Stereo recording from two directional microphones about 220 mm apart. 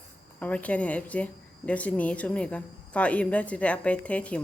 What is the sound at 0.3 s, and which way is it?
Speech, 5° left (ahead or behind).